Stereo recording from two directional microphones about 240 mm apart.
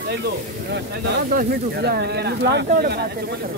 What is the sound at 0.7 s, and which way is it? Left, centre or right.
Speech, right.